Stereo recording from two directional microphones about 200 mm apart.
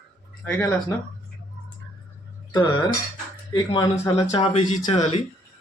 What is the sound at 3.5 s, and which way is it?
Speech, 20° left (ahead or behind).